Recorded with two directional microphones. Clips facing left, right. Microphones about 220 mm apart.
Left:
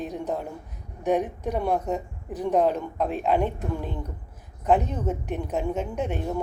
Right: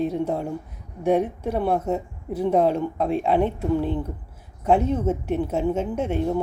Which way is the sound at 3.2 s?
10° left (ahead or behind).